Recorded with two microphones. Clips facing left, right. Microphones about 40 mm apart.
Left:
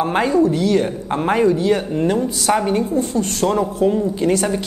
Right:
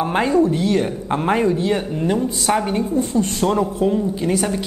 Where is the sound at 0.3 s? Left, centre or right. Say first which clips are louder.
Left 1 dB; right.